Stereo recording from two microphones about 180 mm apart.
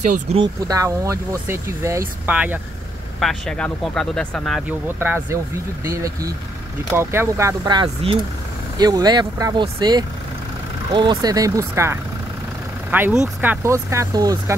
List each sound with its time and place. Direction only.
0.0 s speech: 40° right (ahead or behind)
0.4 s speech: 20° right (ahead or behind)
3.2 s speech: centre (ahead or behind)
4.9 s speech: 10° right (ahead or behind)